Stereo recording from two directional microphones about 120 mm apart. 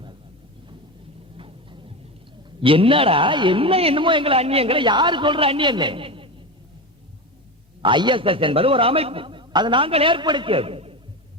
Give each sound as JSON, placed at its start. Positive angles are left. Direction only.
{"t": 1.4, "sound": "music", "side_deg": -45}
{"t": 2.6, "sound": "a man's voice", "side_deg": -50}
{"t": 7.8, "sound": "a man's voice", "side_deg": -40}